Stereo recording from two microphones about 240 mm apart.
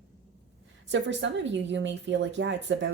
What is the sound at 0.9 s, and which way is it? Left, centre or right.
A woman's voice, right.